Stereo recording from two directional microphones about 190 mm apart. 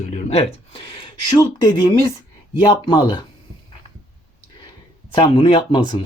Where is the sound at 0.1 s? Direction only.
30° left (ahead or behind).